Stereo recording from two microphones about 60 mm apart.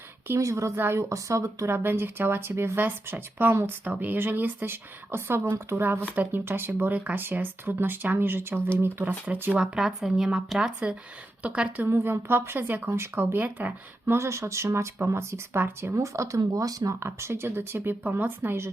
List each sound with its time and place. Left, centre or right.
0.3 s speech: right
0.8 s speech: right
1.1 s speech: right
1.7 s speech: right
5.8 s speech: right
6.9 s speech: right
9.6 s speech: centre
11.4 s speech: centre
11.8 s speech: right
13.4 s speech: right
14.0 s speech: right
16.0 s speech: right
17.0 s speech: right